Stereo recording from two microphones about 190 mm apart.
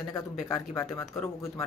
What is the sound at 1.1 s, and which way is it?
Speech, 15° left (ahead or behind).